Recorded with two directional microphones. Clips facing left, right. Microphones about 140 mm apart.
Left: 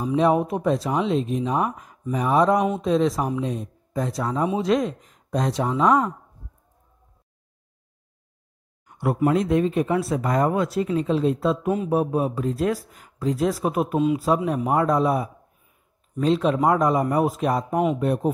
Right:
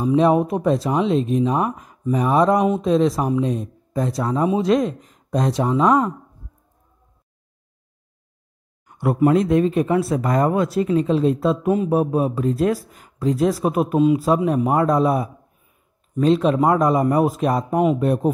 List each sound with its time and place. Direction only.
0.1 s speech: 35° right (ahead or behind)
8.8 s speech: 45° right (ahead or behind)
11.3 s speech: 35° right (ahead or behind)
16.4 s speech: 40° right (ahead or behind)